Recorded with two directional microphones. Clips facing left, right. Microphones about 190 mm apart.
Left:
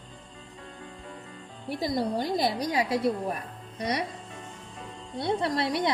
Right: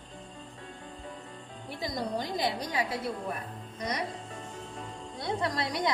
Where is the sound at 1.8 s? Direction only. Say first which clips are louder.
Left 5 dB; 30° left (ahead or behind).